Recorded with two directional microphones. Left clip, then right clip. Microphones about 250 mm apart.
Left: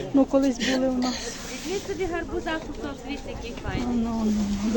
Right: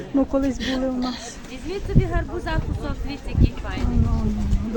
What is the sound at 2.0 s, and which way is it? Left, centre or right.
Speech, right.